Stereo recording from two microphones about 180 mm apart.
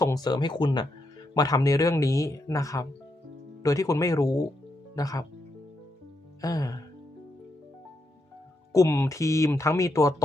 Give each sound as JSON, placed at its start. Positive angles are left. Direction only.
{"t": 0.0, "sound": "speech", "side_deg": 20}
{"t": 6.4, "sound": "speech", "side_deg": 20}
{"t": 8.7, "sound": "speech", "side_deg": 15}